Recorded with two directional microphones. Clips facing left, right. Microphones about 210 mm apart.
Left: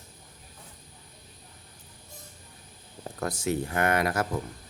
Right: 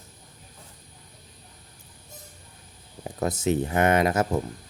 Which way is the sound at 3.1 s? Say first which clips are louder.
Right 4 dB; 20° right (ahead or behind).